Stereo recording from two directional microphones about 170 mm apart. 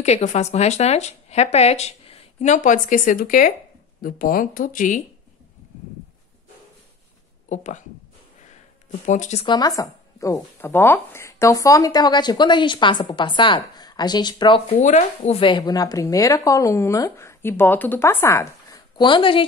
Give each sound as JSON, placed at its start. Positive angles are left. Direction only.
{"t": 0.0, "sound": "speech", "side_deg": 40}
{"t": 7.4, "sound": "speech", "side_deg": 45}
{"t": 9.0, "sound": "speech", "side_deg": 45}
{"t": 9.5, "sound": "speech", "side_deg": 20}